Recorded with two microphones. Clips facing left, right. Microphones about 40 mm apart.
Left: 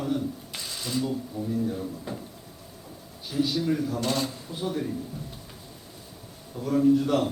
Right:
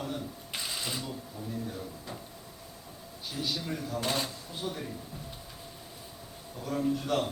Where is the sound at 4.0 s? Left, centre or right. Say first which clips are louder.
Left 4 dB; centre.